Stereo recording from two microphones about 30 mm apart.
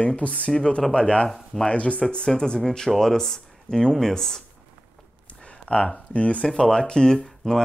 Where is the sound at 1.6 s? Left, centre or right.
Left.